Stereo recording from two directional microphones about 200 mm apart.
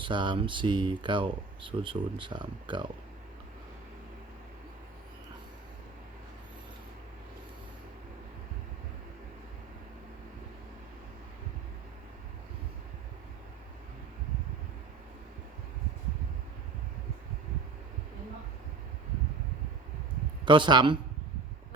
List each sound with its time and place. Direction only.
0.0 s speech: 25° right (ahead or behind)
20.4 s speech: 25° right (ahead or behind)